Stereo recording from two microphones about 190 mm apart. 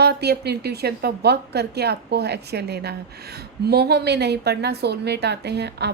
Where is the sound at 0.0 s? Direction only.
60° right (ahead or behind).